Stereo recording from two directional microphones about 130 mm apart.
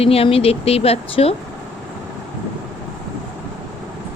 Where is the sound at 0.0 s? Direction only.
50° left (ahead or behind).